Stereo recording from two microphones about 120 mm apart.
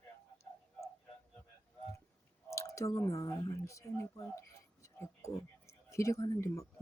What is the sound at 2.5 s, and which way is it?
Speech, 25° left (ahead or behind).